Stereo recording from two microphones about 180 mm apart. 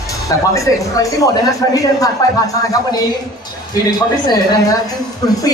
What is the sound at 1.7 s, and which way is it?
Speech, 20° left (ahead or behind).